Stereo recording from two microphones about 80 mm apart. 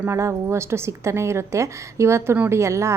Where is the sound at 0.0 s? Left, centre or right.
Right.